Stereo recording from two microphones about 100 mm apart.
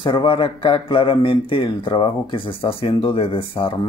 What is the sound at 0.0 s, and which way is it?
Speech, 50° left (ahead or behind).